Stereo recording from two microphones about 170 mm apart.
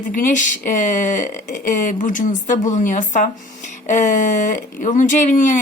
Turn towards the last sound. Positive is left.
turn(degrees=50)  # may be behind; listen again after turning